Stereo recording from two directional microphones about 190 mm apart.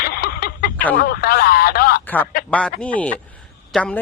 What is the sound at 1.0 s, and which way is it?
Speech, 55° left (ahead or behind).